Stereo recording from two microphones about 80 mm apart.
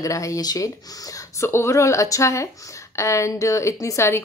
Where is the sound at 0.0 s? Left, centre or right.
Left.